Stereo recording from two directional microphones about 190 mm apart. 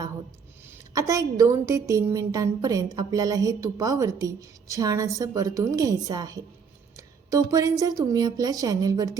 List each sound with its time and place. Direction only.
0.9 s a woman's voice: 20° right (ahead or behind)